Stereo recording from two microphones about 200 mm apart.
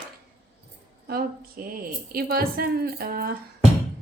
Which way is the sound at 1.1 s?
45° right (ahead or behind).